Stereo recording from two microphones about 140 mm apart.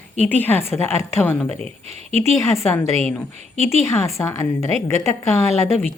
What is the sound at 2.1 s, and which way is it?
Speech, 50° right (ahead or behind).